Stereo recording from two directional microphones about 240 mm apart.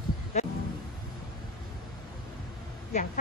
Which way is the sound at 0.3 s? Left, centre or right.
Left.